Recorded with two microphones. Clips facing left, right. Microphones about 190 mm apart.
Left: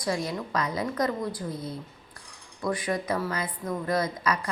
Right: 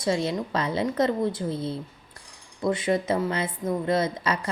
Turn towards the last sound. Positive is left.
turn(degrees=-25)  # may be behind; listen again after turning